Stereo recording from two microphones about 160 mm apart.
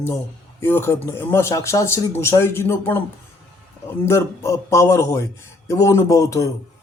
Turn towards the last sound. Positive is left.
turn(degrees=20)  # may be behind; listen again after turning